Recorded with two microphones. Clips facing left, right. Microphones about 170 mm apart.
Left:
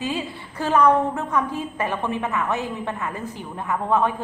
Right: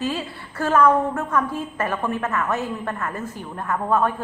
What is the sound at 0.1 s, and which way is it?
A woman's voice, 15° left (ahead or behind).